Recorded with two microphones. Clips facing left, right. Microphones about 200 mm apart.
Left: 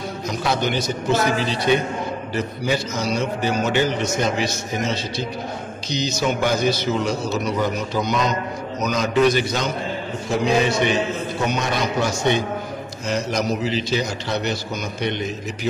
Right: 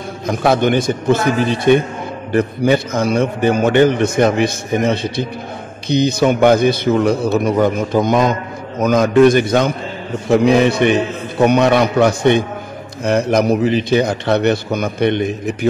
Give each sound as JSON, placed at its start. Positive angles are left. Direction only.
{"t": 0.3, "sound": "a man's voice", "side_deg": -55}